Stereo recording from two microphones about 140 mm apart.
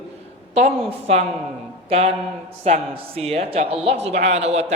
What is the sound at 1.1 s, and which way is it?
A man's voice, 50° right (ahead or behind).